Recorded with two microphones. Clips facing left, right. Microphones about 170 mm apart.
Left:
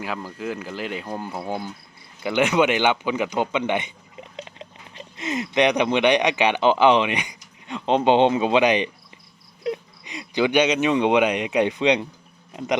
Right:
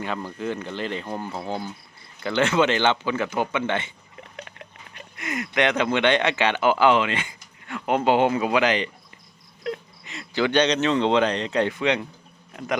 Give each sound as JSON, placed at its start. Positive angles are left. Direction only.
{"t": 0.0, "sound": "speech", "side_deg": 5}